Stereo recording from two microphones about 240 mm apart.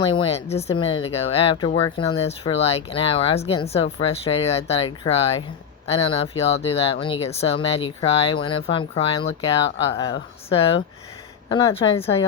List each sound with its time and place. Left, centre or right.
0.1 s speech: left